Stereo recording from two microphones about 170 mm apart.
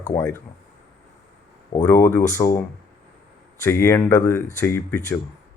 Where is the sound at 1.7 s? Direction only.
15° left (ahead or behind).